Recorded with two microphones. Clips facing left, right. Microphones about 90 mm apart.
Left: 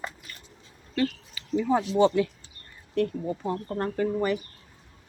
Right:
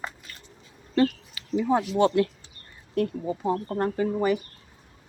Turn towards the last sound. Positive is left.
turn(degrees=-10)  # may be behind; listen again after turning